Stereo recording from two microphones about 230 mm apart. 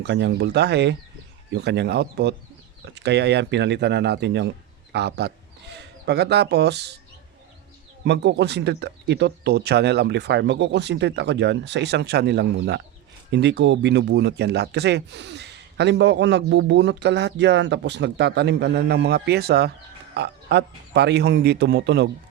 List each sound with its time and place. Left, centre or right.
0.0 s speech: right
8.0 s speech: right